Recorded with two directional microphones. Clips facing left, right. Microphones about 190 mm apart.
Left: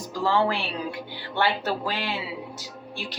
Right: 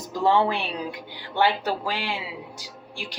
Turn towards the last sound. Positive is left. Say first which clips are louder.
# left 2 dB
turn(degrees=-10)  # may be behind; listen again after turning